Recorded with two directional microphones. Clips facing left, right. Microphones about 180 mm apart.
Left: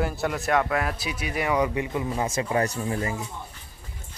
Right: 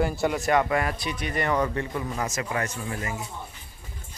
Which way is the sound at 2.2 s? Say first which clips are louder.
Left 4 dB; 30° left (ahead or behind).